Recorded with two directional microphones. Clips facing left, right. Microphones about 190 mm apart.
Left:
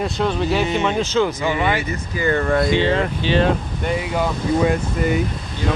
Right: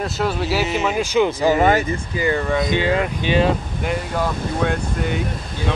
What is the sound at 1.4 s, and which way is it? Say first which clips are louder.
Speech: right 5 dB; 40° right (ahead or behind).